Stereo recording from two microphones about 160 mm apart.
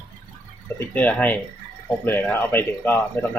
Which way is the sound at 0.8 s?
10° left (ahead or behind).